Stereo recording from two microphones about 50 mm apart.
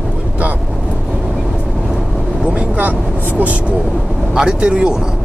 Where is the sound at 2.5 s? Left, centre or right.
Right.